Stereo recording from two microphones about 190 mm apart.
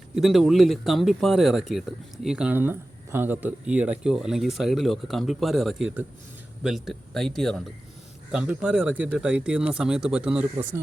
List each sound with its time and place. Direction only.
0.2 s speech: centre (ahead or behind)